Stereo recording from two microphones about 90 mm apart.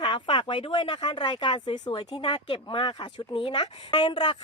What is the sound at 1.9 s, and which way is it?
A woman's voice, 80° left.